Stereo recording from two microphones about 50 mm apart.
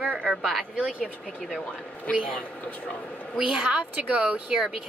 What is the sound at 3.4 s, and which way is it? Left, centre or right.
Speech, centre.